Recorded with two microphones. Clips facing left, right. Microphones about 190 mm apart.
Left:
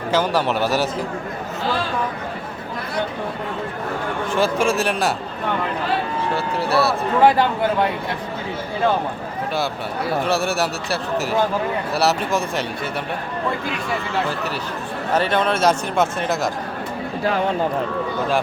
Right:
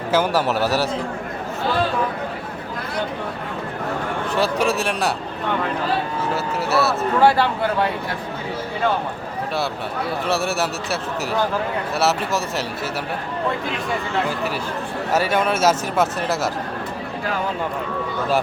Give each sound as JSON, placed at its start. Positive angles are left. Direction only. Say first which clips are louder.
{"t": 0.1, "sound": "speech", "louder": "even", "side_deg": -10}
{"t": 4.4, "sound": "speech", "louder": "left 1 dB", "side_deg": 0}
{"t": 6.3, "sound": "speech", "louder": "left 1 dB", "side_deg": -5}
{"t": 7.2, "sound": "speech", "louder": "left 1 dB", "side_deg": 20}
{"t": 10.2, "sound": "speech", "louder": "left 2 dB", "side_deg": 0}
{"t": 11.9, "sound": "speech", "louder": "left 1 dB", "side_deg": 0}
{"t": 15.1, "sound": "speech", "louder": "left 1 dB", "side_deg": -10}